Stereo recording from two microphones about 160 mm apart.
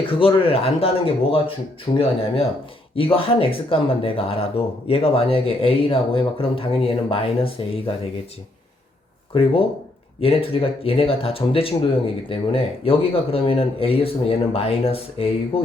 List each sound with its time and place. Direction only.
0.0 s speech: 35° left (ahead or behind)
9.3 s speech: 35° left (ahead or behind)